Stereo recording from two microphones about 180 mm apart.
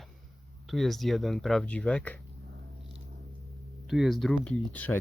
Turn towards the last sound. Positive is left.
turn(degrees=10)  # may be behind; listen again after turning